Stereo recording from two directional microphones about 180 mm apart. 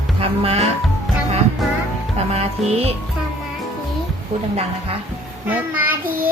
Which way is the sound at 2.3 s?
35° right (ahead or behind).